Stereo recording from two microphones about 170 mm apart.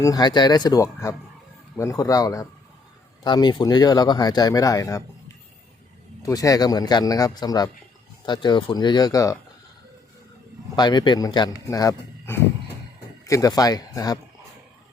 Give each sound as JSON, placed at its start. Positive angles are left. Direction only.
{"t": 0.0, "sound": "speech", "side_deg": 25}
{"t": 6.2, "sound": "speech", "side_deg": 20}
{"t": 10.8, "sound": "speech", "side_deg": 25}